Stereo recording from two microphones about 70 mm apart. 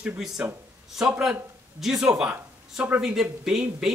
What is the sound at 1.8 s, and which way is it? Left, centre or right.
Speech, centre.